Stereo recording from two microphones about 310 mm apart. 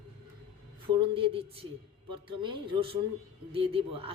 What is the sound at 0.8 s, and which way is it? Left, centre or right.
A woman's voice, centre.